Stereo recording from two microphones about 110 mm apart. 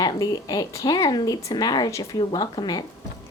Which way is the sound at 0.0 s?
35° left (ahead or behind).